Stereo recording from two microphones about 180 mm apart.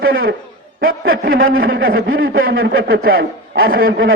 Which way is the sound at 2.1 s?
90° right.